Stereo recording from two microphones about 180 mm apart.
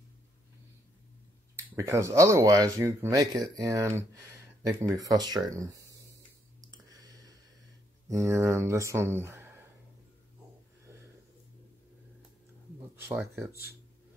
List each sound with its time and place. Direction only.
1.7 s speech: 15° right (ahead or behind)
8.1 s speech: 15° right (ahead or behind)
10.9 s a sound: 15° right (ahead or behind)
12.9 s speech: 15° right (ahead or behind)